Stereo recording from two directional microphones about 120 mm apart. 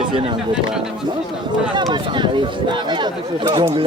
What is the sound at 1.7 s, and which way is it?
Speech, 40° right (ahead or behind).